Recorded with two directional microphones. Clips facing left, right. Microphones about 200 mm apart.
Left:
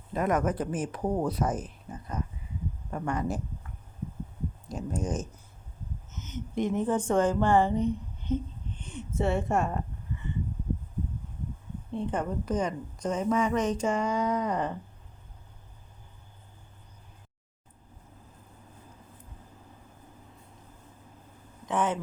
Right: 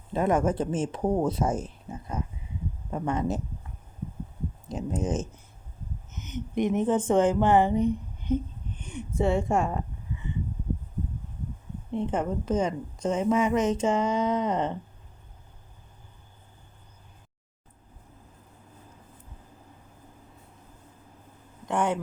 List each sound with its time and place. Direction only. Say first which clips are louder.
0.1 s a woman's voice: right 3 dB; 30° right (ahead or behind)
4.7 s a woman's voice: right 3 dB; 20° right (ahead or behind)
8.2 s a sound: right 4 dB; 15° right (ahead or behind)
11.9 s a woman's voice: right 3 dB; 20° right (ahead or behind)
21.7 s speech: right 2 dB; 10° right (ahead or behind)